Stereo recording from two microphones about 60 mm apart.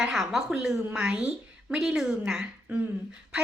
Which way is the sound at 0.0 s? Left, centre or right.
Centre.